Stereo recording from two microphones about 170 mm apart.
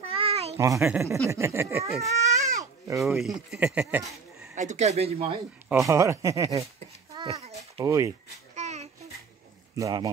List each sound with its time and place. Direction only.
0.0 s a sound: 35° right (ahead or behind)
0.6 s speech: 15° right (ahead or behind)
3.4 s speech: 10° right (ahead or behind)
4.6 s speech: 45° right (ahead or behind)
5.9 s speech: 15° right (ahead or behind)
7.3 s a sound: 40° right (ahead or behind)
7.8 s speech: 20° right (ahead or behind)
8.5 s child singing: 40° right (ahead or behind)
9.8 s speech: 20° right (ahead or behind)